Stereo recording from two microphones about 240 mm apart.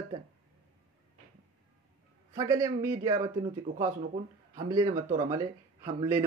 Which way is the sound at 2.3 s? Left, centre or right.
Centre.